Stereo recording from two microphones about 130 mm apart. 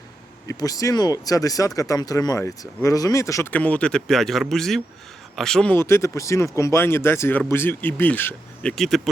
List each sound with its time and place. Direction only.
0.4 s speech: 25° left (ahead or behind)
3.5 s speech: 10° left (ahead or behind)
5.7 s speech: 20° left (ahead or behind)
8.7 s speech: 5° left (ahead or behind)